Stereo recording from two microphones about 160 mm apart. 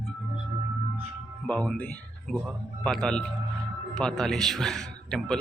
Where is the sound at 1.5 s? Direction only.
5° left (ahead or behind).